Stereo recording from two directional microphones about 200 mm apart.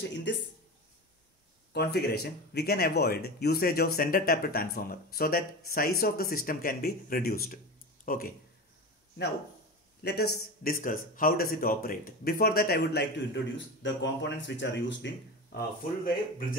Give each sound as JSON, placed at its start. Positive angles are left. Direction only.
{"t": 0.0, "sound": "speech", "side_deg": 60}
{"t": 1.7, "sound": "speech", "side_deg": 55}
{"t": 10.0, "sound": "speech", "side_deg": 55}
{"t": 15.5, "sound": "speech", "side_deg": 50}